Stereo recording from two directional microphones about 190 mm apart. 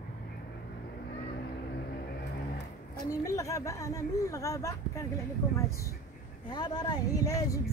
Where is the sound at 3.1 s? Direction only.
15° left (ahead or behind).